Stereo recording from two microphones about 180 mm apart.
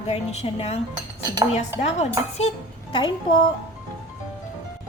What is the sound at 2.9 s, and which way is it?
Speech, 25° left (ahead or behind).